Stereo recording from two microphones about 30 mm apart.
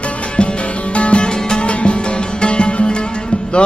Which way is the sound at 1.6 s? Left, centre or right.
Left.